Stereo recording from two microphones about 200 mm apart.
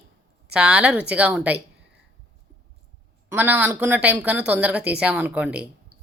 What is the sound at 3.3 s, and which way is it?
Speech, 10° right (ahead or behind).